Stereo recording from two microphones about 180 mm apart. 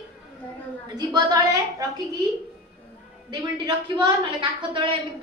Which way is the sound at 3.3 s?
25° right (ahead or behind).